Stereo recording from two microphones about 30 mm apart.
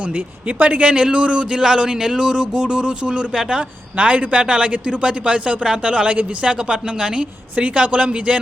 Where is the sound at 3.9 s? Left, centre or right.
Right.